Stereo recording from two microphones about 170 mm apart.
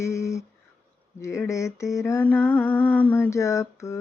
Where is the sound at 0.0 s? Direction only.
15° left (ahead or behind).